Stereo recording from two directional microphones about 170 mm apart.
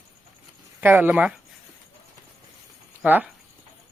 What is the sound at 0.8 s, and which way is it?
Speech, 10° right (ahead or behind).